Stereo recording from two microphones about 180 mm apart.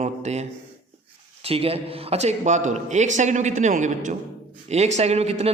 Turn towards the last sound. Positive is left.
turn(degrees=-35)  # may be behind; listen again after turning